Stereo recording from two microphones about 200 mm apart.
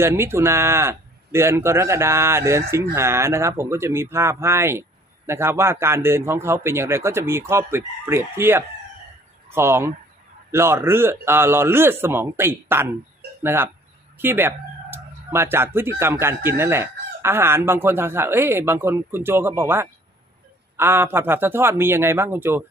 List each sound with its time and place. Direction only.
0.0 s speech: 10° right (ahead or behind)